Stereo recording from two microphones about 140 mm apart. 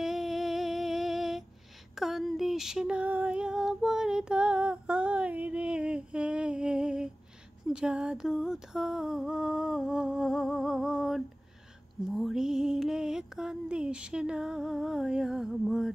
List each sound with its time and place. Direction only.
0.0 s music: centre (ahead or behind)
2.0 s female singing: centre (ahead or behind)
7.6 s a sound: 5° right (ahead or behind)
12.1 s music: 5° right (ahead or behind)